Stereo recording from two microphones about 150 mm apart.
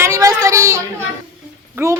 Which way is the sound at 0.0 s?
20° right (ahead or behind).